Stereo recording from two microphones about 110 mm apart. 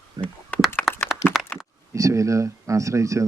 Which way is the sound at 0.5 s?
15° left (ahead or behind).